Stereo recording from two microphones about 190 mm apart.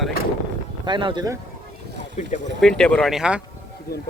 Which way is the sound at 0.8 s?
25° right (ahead or behind).